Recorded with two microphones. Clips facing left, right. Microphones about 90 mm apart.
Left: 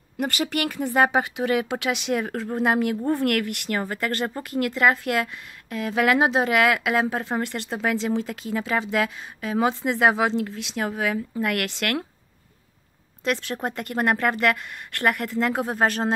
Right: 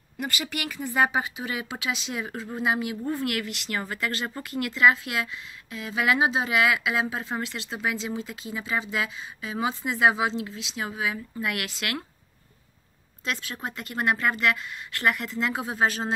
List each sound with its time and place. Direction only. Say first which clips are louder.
0.2 s speech: left 6 dB; 55° left (ahead or behind)
13.2 s speech: left 6 dB; 60° left (ahead or behind)